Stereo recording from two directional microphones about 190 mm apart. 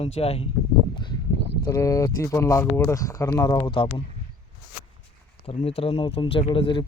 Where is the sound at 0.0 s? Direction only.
30° left (ahead or behind).